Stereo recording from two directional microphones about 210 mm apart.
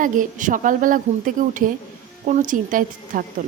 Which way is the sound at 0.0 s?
40° right (ahead or behind).